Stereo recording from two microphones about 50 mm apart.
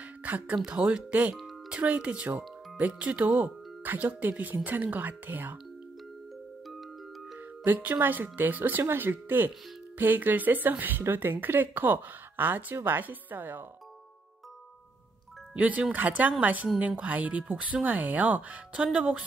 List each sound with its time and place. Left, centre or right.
0.2 s speech: right
0.7 s speech: centre; by 5.6 s right
7.6 s speech: right
15.5 s speech: right